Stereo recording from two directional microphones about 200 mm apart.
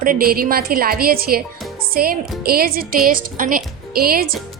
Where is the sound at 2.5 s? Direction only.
50° right (ahead or behind).